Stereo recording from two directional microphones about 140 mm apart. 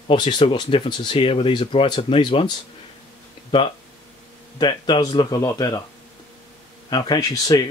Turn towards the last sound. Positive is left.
turn(degrees=25)  # may be behind; listen again after turning